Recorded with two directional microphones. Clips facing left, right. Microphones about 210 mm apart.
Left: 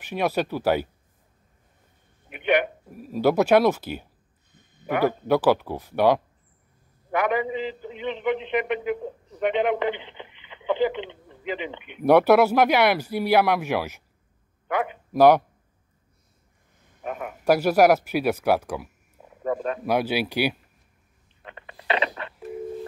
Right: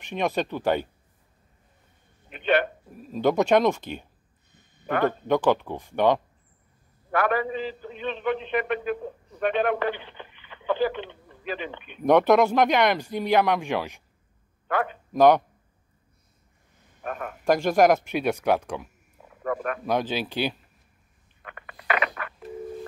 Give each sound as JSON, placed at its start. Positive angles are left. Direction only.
{"t": 0.0, "sound": "a man's voice", "side_deg": 5}
{"t": 2.2, "sound": "a man's voice", "side_deg": 15}
{"t": 17.0, "sound": "a man's voice", "side_deg": 10}
{"t": 19.2, "sound": "frog", "side_deg": 20}
{"t": 19.8, "sound": "a man's voice", "side_deg": 10}
{"t": 21.4, "sound": "a sound", "side_deg": 25}